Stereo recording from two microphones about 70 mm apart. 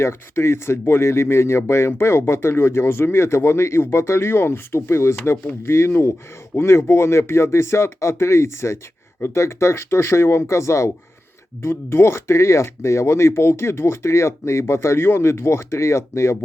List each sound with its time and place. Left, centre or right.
0.0 s speech: left